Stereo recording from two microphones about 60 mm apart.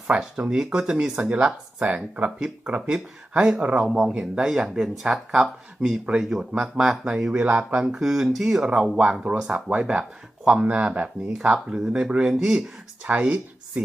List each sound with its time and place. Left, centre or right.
0.1 s speech: centre
13.1 s speech: right